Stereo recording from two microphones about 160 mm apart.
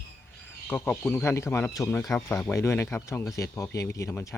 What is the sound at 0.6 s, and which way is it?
Speech, 10° left (ahead or behind).